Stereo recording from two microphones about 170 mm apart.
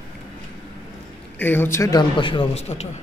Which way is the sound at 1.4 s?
10° left (ahead or behind).